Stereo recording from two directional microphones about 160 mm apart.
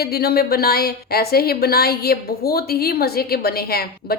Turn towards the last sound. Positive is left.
turn(degrees=75)  # may be behind; listen again after turning